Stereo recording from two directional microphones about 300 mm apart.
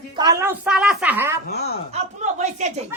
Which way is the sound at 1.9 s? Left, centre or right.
Right.